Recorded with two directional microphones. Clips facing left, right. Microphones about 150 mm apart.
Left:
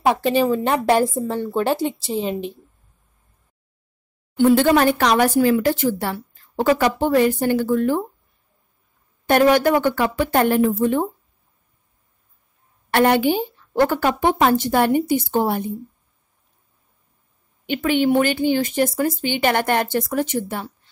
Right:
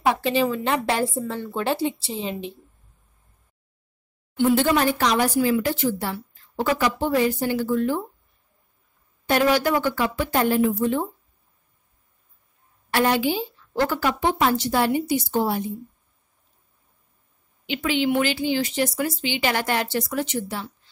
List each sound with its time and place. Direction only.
0.0 s speech: 45° left (ahead or behind)
4.4 s speech: 55° left (ahead or behind)
9.2 s speech: 55° left (ahead or behind)
12.9 s speech: 60° left (ahead or behind)
17.6 s speech: 50° left (ahead or behind)